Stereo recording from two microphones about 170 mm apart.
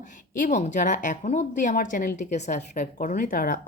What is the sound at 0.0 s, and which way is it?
Speech, 50° left (ahead or behind).